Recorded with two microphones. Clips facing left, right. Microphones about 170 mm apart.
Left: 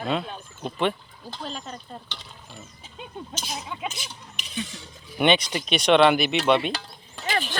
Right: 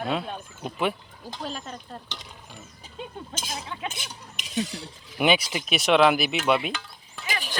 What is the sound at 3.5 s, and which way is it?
Speech, 5° left (ahead or behind).